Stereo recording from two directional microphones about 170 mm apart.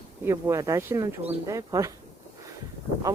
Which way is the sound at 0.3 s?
20° right (ahead or behind).